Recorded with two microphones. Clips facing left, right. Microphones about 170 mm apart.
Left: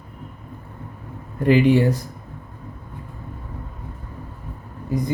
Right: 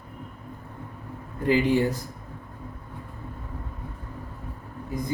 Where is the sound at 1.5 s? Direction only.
85° left.